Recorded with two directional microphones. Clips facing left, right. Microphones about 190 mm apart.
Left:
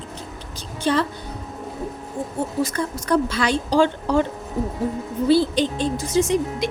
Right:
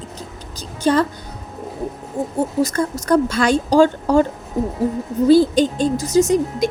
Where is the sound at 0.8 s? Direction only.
45° right (ahead or behind).